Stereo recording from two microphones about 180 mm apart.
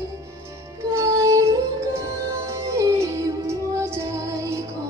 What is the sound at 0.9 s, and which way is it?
Music, 15° right (ahead or behind).